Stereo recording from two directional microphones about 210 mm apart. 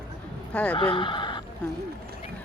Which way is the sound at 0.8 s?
25° left (ahead or behind).